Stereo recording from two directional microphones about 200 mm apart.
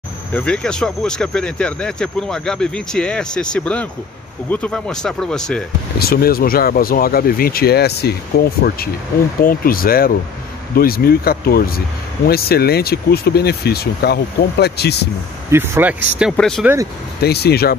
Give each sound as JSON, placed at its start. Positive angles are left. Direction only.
{"t": 0.3, "sound": "speech", "side_deg": 5}
{"t": 5.9, "sound": "speech", "side_deg": 50}
{"t": 15.5, "sound": "speech", "side_deg": -10}
{"t": 16.2, "sound": "speech", "side_deg": 0}
{"t": 17.2, "sound": "speech", "side_deg": 55}